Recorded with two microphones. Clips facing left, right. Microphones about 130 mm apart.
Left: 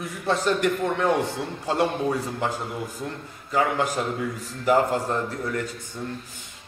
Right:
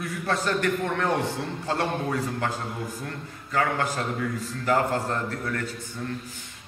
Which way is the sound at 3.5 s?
15° left (ahead or behind).